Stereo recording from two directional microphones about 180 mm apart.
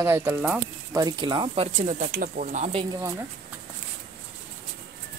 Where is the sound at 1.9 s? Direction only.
50° right (ahead or behind).